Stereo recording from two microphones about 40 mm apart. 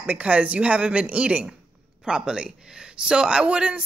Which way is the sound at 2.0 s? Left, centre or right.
Centre.